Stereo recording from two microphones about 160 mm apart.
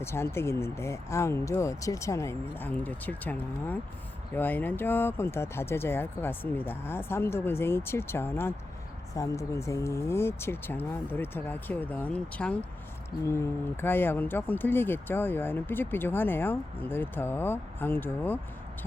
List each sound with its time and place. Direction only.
0.0 s speech: 15° left (ahead or behind)
13.8 s speech: 15° left (ahead or behind)